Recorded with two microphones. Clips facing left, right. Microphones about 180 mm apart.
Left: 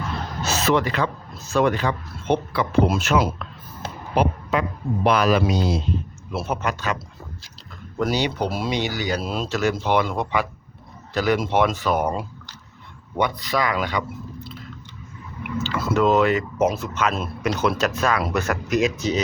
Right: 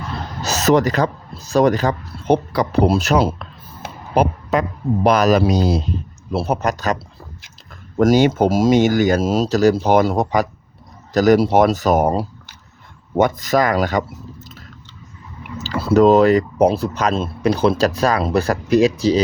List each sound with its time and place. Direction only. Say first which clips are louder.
0.4 s speech: right 6 dB; 40° right (ahead or behind)